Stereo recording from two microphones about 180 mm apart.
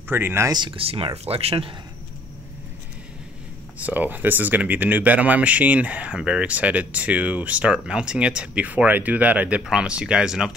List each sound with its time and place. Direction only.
0.1 s speech: 15° right (ahead or behind); by 1.7 s 35° right (ahead or behind)
3.8 s speech: 10° right (ahead or behind)